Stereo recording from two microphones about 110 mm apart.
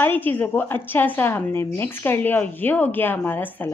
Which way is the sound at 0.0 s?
15° left (ahead or behind).